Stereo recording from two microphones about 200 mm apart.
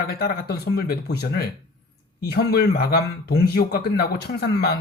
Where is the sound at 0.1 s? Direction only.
50° left (ahead or behind).